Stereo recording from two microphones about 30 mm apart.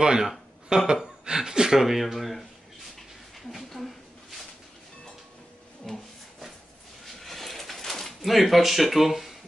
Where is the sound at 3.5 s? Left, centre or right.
Centre.